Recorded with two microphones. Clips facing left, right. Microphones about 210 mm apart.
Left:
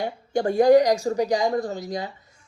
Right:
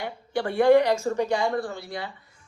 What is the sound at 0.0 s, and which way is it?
A woman's voice, 40° left (ahead or behind).